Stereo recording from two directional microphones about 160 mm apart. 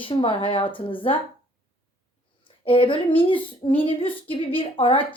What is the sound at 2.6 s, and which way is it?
A woman's voice, 35° left (ahead or behind).